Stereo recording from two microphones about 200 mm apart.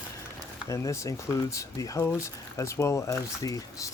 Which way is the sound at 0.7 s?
15° left (ahead or behind).